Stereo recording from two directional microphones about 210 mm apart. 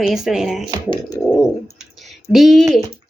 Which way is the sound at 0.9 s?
20° left (ahead or behind).